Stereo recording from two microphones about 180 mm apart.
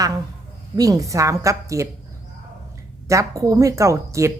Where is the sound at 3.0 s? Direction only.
15° right (ahead or behind).